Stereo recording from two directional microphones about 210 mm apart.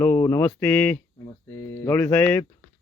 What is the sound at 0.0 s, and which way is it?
Speech, 10° left (ahead or behind).